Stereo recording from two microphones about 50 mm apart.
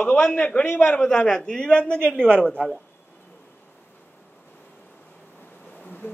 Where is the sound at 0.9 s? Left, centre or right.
Centre.